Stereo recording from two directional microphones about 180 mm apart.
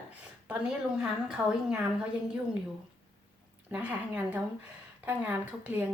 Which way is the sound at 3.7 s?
10° right (ahead or behind).